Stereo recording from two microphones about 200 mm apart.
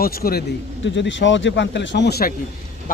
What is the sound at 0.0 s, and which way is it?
Speech, 50° left (ahead or behind).